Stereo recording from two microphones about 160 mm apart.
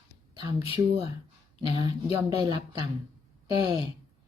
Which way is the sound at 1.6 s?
25° right (ahead or behind).